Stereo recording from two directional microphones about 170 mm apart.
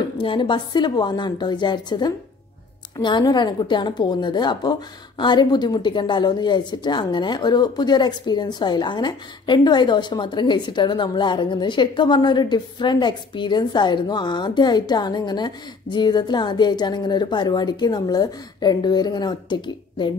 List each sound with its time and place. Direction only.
0.2 s a woman's voice: 30° left (ahead or behind)